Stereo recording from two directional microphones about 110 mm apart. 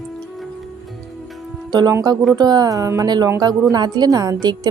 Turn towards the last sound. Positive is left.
turn(degrees=-35)  # may be behind; listen again after turning